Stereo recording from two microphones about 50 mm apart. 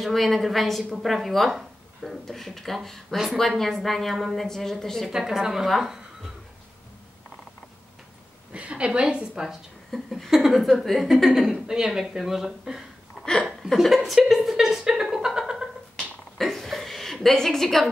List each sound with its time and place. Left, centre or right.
0.0 s a woman's voice: centre
4.5 s a woman's voice: centre
5.1 s speech: centre
8.5 s a woman's voice: right
9.9 s a woman's voice: centre
10.3 s a woman's voice: centre
13.2 s speech: centre
13.6 s speech: centre
16.4 s chuckle: centre